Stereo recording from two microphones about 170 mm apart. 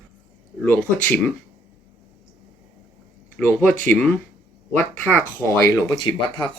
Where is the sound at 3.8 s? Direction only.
10° left (ahead or behind).